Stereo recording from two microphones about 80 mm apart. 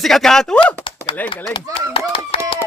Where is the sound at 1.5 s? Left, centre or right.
Left.